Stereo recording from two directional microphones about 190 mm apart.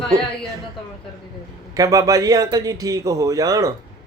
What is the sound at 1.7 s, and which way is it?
A man's voice, 15° right (ahead or behind).